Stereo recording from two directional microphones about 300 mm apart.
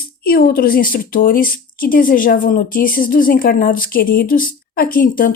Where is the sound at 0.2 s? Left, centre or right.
Left.